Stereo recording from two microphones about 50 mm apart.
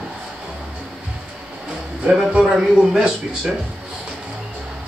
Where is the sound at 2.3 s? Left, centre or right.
Centre.